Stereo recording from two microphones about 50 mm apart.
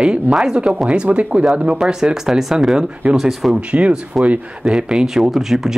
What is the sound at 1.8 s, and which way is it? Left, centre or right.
Speech, centre.